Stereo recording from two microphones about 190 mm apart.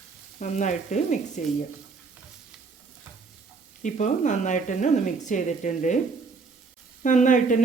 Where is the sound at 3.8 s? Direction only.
40° left (ahead or behind).